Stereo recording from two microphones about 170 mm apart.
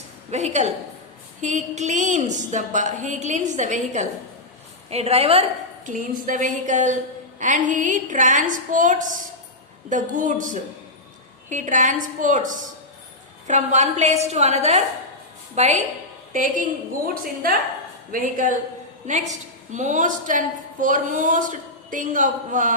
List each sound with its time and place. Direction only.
0.3 s a woman's voice: 40° right (ahead or behind)
5.9 s a woman's voice: 50° right (ahead or behind)
18.1 s a woman's voice: 50° right (ahead or behind)